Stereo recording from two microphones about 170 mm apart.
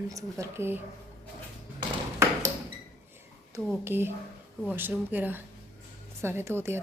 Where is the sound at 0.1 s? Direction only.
20° right (ahead or behind).